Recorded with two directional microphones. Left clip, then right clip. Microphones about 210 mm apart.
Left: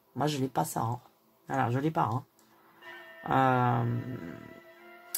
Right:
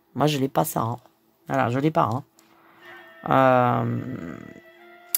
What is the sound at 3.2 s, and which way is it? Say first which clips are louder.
Speech: right 8 dB; 50° right (ahead or behind).